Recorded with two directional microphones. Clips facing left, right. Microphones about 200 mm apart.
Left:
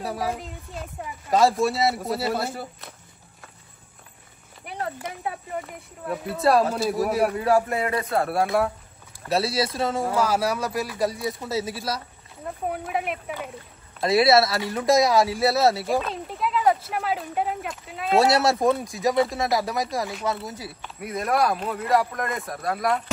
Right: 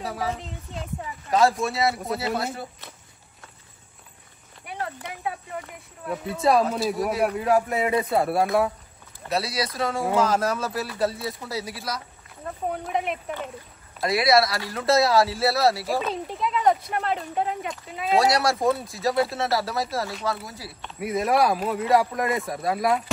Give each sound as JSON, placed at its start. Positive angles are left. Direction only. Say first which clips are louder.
{"t": 0.0, "sound": "speech", "louder": "left 1 dB", "side_deg": 0}
{"t": 5.6, "sound": "speech", "louder": "left 3 dB", "side_deg": 0}
{"t": 9.3, "sound": "speech", "louder": "left 3 dB", "side_deg": 25}
{"t": 10.1, "sound": "speech", "louder": "right 3 dB", "side_deg": 10}
{"t": 12.6, "sound": "speech", "louder": "right 1 dB", "side_deg": 5}
{"t": 14.0, "sound": "speech", "louder": "left 2 dB", "side_deg": 25}
{"t": 15.9, "sound": "speech", "louder": "left 1 dB", "side_deg": 0}
{"t": 18.3, "sound": "speech", "louder": "left 2 dB", "side_deg": 25}
{"t": 20.8, "sound": "speech", "louder": "right 5 dB", "side_deg": 0}